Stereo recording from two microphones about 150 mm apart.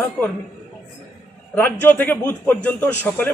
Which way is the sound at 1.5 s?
10° left (ahead or behind).